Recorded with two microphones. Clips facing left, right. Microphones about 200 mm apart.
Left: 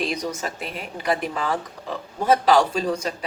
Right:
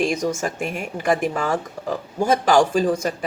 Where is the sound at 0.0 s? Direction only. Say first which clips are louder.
Right 5 dB; 50° right (ahead or behind).